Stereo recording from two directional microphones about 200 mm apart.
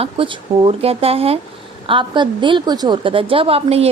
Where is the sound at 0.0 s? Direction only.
25° right (ahead or behind).